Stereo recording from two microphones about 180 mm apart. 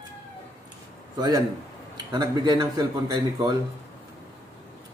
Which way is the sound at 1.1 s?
20° right (ahead or behind).